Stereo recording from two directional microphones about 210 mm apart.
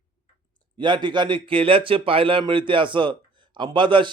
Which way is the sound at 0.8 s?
20° right (ahead or behind).